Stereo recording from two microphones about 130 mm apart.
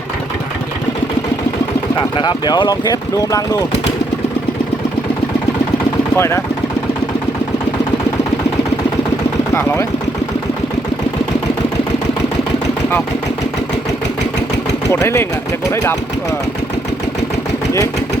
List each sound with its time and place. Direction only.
2.0 s speech: 35° left (ahead or behind)
6.1 s speech: 20° left (ahead or behind)
14.8 s speech: 20° left (ahead or behind)